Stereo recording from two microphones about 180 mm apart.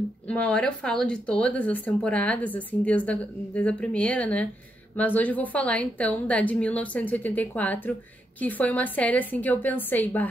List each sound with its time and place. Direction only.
0.3 s speech: 5° left (ahead or behind)